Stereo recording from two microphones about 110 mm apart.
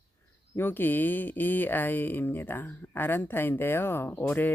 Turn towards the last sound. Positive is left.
turn(degrees=15)  # may be behind; listen again after turning